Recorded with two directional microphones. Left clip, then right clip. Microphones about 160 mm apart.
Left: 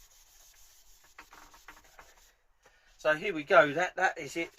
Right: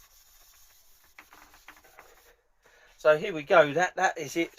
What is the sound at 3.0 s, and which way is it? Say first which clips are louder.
Speech: right 6 dB; 40° right (ahead or behind).